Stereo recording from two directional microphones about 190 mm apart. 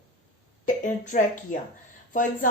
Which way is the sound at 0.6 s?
40° left (ahead or behind).